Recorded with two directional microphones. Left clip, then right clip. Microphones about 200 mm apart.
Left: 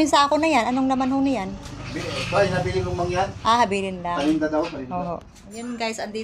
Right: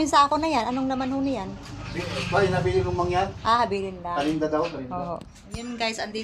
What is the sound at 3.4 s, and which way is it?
Speech, 15° left (ahead or behind).